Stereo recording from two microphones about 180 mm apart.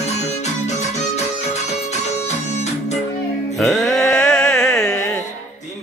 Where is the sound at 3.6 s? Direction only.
Centre (ahead or behind).